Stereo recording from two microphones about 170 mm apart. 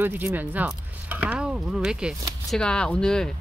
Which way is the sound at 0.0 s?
10° right (ahead or behind).